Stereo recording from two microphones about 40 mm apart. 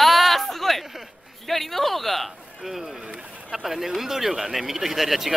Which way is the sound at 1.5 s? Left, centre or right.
Centre.